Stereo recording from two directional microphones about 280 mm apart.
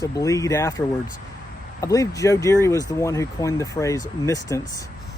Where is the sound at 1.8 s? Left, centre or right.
Centre.